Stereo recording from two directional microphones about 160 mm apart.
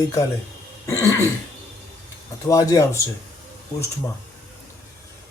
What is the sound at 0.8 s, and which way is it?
Speech, 20° left (ahead or behind).